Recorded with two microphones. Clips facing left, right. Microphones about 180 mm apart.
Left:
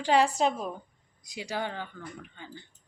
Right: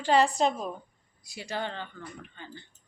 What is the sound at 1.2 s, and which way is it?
Speech, 15° left (ahead or behind).